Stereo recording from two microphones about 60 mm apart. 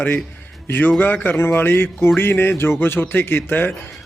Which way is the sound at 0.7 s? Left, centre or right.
Left.